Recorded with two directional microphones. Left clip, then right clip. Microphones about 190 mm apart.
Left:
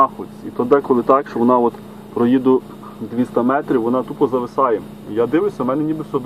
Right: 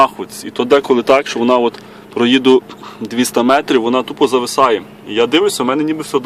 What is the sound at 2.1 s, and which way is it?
Speech, 25° right (ahead or behind).